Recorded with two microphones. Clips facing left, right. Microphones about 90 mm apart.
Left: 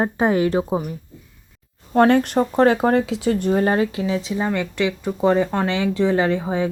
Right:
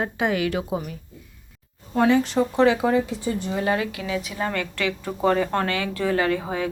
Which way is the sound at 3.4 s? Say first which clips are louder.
Left 5 dB; 45° left (ahead or behind).